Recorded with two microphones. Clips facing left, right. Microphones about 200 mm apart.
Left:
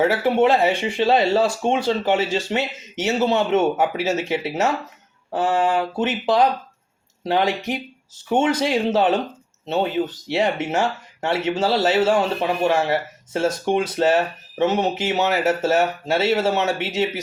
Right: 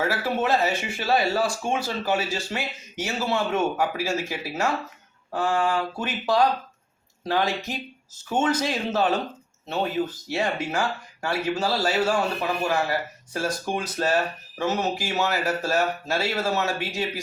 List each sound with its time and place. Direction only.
0.0 s speech: 20° left (ahead or behind)